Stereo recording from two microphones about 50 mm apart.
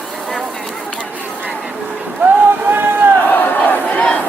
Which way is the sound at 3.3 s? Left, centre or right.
Left.